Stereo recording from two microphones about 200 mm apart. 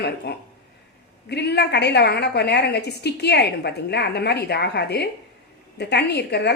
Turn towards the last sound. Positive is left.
turn(degrees=55)  # may be behind; listen again after turning